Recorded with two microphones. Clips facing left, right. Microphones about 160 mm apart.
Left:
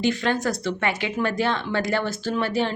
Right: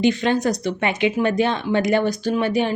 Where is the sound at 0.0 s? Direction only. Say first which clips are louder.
Right 4 dB; 20° right (ahead or behind).